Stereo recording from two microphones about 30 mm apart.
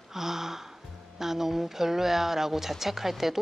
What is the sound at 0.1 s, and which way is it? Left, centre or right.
Music, centre.